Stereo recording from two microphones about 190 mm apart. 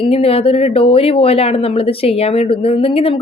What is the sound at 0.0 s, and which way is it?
A woman's voice, 30° left (ahead or behind).